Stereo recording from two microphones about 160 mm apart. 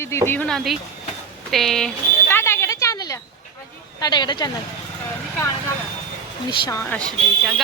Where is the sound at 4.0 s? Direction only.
25° left (ahead or behind).